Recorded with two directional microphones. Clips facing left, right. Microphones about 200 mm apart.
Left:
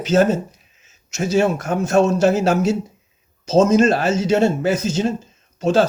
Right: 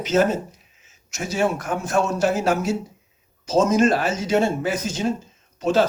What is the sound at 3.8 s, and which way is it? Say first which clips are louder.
Speech: left 3 dB; 25° left (ahead or behind).